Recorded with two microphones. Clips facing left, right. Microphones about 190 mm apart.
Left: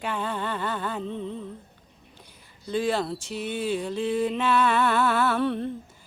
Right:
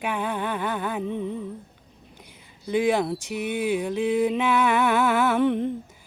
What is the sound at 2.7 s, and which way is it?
Mantra, 15° right (ahead or behind).